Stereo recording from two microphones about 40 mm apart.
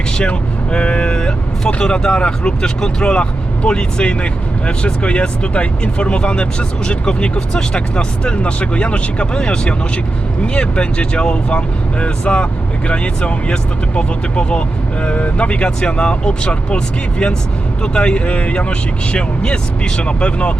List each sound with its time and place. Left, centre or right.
0.2 s speech: left